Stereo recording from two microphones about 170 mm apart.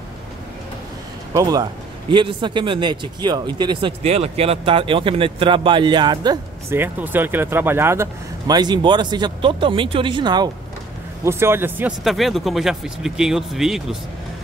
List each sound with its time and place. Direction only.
1.3 s speech: 20° right (ahead or behind)
4.0 s a man's voice: 40° right (ahead or behind)
6.7 s speech: 10° right (ahead or behind)
12.0 s speech: centre (ahead or behind)